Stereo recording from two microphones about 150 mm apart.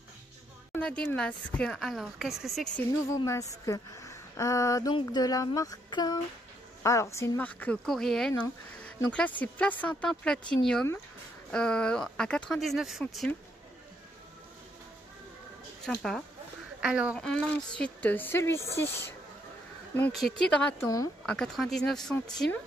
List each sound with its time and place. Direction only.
0.7 s speech: 5° left (ahead or behind)
3.1 s speech: 20° left (ahead or behind); by 13.3 s centre (ahead or behind)
15.8 s speech: 5° left (ahead or behind)
17.2 s speech: 5° left (ahead or behind)
20.2 s speech: centre (ahead or behind)
20.8 s speech: 25° left (ahead or behind)
21.3 s speech: centre (ahead or behind)